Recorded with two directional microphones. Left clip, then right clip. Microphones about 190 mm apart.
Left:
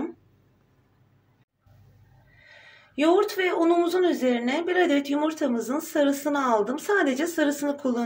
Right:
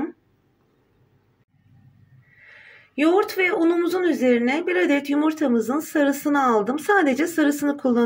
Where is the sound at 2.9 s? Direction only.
40° right (ahead or behind).